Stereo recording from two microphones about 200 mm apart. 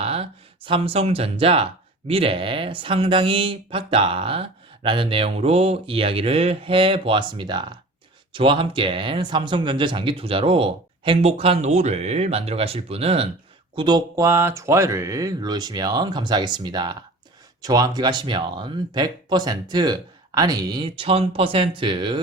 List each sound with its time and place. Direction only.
0.0 s speech: 30° right (ahead or behind)